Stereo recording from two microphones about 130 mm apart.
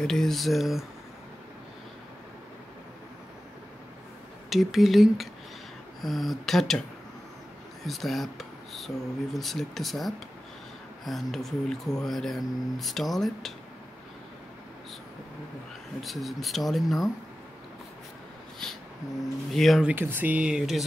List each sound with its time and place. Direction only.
0.0 s speech: 5° left (ahead or behind)
4.5 s speech: centre (ahead or behind)
7.8 s speech: centre (ahead or behind)
16.0 s speech: centre (ahead or behind)
18.6 s speech: 5° left (ahead or behind)
19.9 s speech: 15° right (ahead or behind)